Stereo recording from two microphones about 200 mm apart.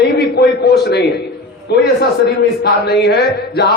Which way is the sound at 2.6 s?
55° left (ahead or behind).